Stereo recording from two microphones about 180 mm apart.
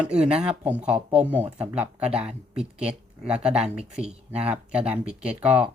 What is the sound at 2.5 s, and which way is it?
Speech, 5° right (ahead or behind).